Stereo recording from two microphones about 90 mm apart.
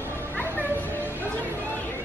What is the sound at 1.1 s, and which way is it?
Music, 20° left (ahead or behind).